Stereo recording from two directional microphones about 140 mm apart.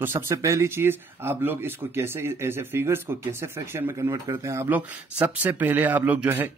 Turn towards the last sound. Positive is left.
turn(degrees=-10)  # may be behind; listen again after turning